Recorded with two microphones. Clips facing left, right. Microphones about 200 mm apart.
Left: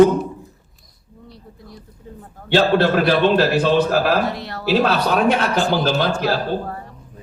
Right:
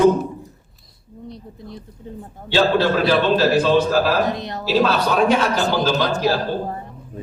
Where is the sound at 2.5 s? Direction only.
60° left (ahead or behind).